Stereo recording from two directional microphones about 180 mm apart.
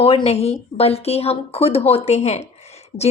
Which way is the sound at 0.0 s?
30° left (ahead or behind).